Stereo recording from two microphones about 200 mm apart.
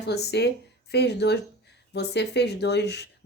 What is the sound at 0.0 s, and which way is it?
Speech, 55° left (ahead or behind).